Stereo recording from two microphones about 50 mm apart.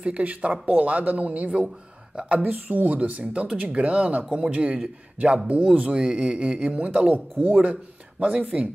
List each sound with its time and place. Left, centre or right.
0.0 s speech: right
2.4 s speech: right
8.2 s speech: right